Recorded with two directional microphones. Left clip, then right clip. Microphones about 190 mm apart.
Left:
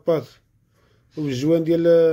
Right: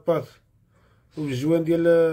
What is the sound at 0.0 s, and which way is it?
Mantra, 30° left (ahead or behind).